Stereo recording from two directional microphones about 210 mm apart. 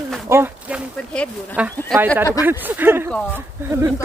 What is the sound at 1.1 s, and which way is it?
Speech, 5° left (ahead or behind).